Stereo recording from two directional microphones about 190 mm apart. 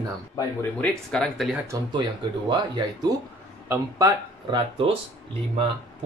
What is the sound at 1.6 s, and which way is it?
Speech, 25° right (ahead or behind).